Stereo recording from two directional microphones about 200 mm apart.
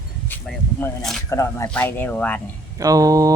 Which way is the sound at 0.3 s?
5° left (ahead or behind).